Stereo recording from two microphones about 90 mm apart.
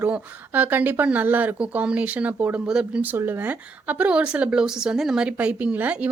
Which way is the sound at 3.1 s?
25° right (ahead or behind).